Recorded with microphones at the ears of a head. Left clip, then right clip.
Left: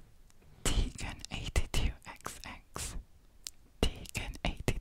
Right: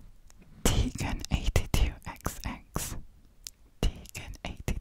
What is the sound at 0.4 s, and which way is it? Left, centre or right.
Whispering, right.